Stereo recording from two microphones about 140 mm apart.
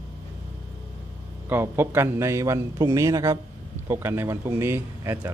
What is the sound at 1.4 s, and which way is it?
A man's voice, 15° right (ahead or behind).